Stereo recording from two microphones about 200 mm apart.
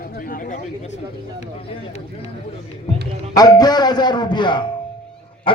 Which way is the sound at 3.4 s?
20° left (ahead or behind).